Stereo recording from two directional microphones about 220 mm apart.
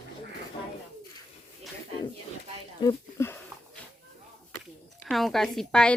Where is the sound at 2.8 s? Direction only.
15° left (ahead or behind).